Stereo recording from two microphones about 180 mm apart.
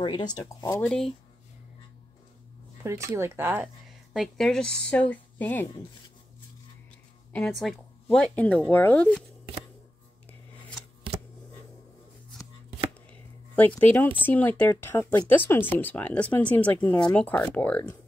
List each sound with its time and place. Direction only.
0.0 s speech: 25° left (ahead or behind)
0.7 s speech: 5° left (ahead or behind)
2.8 s speech: 15° right (ahead or behind); by 5.7 s 10° left (ahead or behind)
7.3 s speech: 5° left (ahead or behind)
13.7 s speech: 10° left (ahead or behind)